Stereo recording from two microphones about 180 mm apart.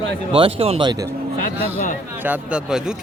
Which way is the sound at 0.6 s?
30° right (ahead or behind).